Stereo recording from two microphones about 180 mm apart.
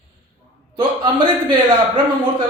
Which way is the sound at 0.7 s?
25° right (ahead or behind).